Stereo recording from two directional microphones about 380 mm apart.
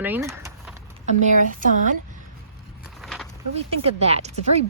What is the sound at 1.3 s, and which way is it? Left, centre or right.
Speech, centre.